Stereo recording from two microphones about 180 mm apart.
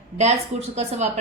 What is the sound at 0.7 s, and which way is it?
Speech, 35° right (ahead or behind).